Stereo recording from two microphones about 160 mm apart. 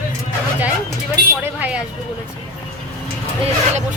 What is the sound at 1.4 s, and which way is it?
Vehicle, 10° right (ahead or behind).